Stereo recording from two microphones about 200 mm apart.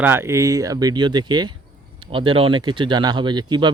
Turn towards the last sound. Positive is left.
turn(degrees=-20)  # may be behind; listen again after turning